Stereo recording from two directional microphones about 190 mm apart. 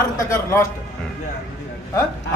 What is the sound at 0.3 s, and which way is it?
Speech, 15° left (ahead or behind).